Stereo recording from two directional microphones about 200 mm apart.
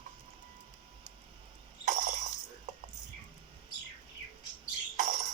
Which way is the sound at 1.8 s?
40° right (ahead or behind).